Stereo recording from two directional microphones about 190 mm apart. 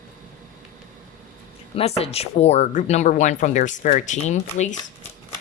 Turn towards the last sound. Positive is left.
turn(degrees=35)  # may be behind; listen again after turning